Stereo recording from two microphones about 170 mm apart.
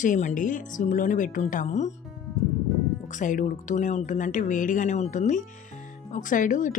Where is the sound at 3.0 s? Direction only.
45° left (ahead or behind).